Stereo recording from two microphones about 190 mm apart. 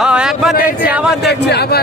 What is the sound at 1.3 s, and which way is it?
Speech, 60° left (ahead or behind).